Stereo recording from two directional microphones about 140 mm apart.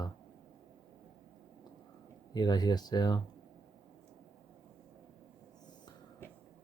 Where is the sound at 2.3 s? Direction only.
30° left (ahead or behind).